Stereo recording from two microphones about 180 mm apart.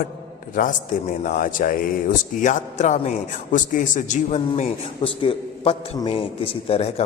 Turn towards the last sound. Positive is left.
turn(degrees=35)  # may be behind; listen again after turning